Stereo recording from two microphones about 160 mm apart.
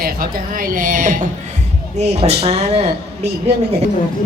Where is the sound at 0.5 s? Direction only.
60° right (ahead or behind).